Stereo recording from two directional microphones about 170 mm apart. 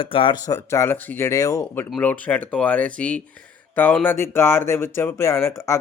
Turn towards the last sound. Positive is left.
turn(degrees=15)  # may be behind; listen again after turning